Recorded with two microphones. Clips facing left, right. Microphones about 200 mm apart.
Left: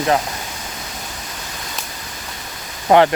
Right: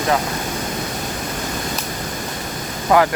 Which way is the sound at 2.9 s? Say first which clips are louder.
Left 3 dB; 25° left (ahead or behind).